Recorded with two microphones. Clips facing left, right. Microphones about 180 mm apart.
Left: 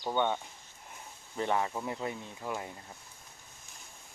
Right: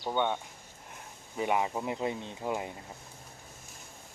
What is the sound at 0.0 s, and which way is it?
Speech, 5° right (ahead or behind).